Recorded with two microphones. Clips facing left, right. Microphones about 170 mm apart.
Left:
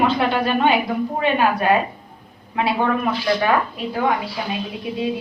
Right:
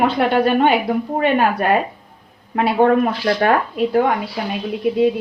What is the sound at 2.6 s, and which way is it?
Speech, 50° right (ahead or behind).